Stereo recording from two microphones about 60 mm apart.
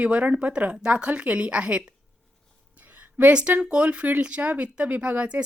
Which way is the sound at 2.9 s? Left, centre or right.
Right.